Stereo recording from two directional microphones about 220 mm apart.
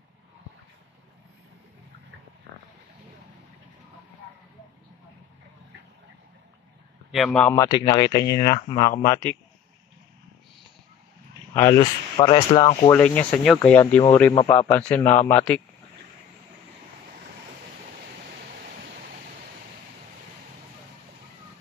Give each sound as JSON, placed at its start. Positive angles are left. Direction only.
{"t": 7.1, "sound": "speech", "side_deg": 0}
{"t": 9.0, "sound": "speech", "side_deg": 10}
{"t": 11.5, "sound": "speech", "side_deg": 15}
{"t": 12.9, "sound": "speech", "side_deg": 5}